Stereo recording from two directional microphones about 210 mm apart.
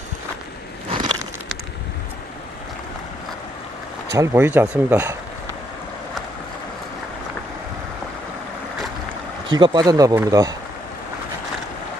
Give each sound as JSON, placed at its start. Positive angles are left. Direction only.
{"t": 4.1, "sound": "speech", "side_deg": -15}
{"t": 9.5, "sound": "speech", "side_deg": -20}